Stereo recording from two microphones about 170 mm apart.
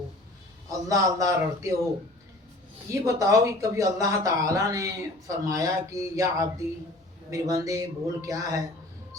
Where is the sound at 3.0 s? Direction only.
20° right (ahead or behind).